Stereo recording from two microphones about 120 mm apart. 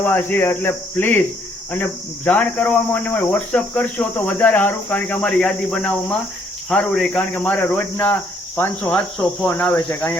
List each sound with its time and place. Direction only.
0.0 s speech: 15° left (ahead or behind)